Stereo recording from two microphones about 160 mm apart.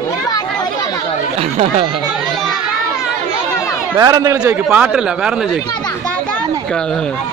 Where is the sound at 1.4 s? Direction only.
40° right (ahead or behind).